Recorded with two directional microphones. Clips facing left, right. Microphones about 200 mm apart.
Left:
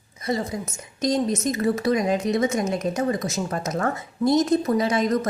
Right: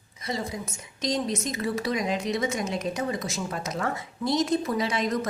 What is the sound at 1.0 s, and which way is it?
A woman's voice, 50° left (ahead or behind).